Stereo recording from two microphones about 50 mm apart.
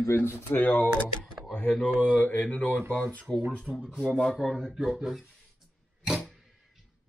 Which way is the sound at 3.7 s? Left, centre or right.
Centre.